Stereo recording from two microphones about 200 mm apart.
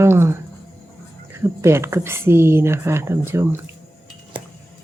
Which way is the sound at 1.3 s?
15° right (ahead or behind).